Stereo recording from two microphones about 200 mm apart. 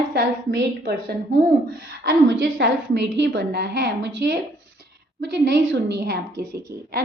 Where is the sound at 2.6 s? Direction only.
60° right (ahead or behind).